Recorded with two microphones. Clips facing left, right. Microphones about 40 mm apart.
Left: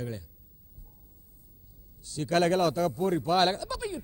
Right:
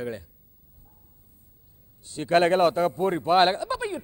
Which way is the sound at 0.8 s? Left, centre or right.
Right.